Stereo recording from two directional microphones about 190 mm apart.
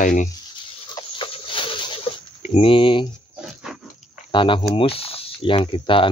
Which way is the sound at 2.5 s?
30° left (ahead or behind).